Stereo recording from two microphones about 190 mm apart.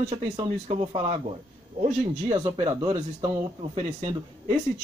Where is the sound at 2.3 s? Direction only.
25° right (ahead or behind).